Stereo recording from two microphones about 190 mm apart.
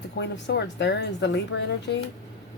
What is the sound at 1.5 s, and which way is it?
Speech, 90° left.